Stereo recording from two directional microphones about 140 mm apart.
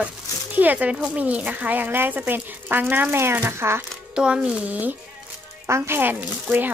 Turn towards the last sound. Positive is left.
turn(degrees=-10)  # may be behind; listen again after turning